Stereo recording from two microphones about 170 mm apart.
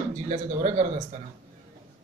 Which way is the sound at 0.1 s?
45° right (ahead or behind).